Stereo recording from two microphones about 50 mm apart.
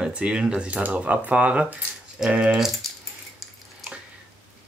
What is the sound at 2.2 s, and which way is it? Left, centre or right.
Speech, centre.